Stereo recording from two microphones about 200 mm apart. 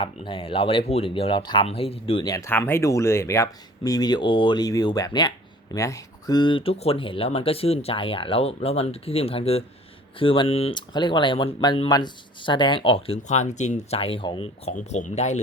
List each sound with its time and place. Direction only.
0.0 s speech: 25° left (ahead or behind)